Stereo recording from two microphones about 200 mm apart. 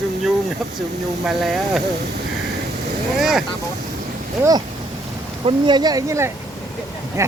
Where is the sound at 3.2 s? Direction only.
5° right (ahead or behind).